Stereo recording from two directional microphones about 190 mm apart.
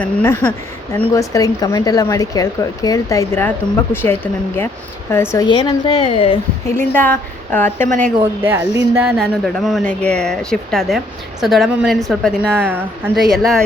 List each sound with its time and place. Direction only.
0.0 s a woman's voice: 10° left (ahead or behind); by 6.4 s 30° left (ahead or behind)
6.7 s speech: 10° left (ahead or behind)
7.9 s speech: 40° right (ahead or behind)
8.2 s speech: 15° right (ahead or behind)